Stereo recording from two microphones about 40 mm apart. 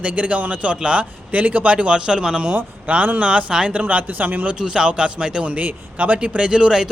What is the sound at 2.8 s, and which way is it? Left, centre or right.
Speech, right.